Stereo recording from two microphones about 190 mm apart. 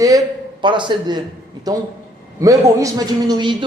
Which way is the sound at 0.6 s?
25° right (ahead or behind).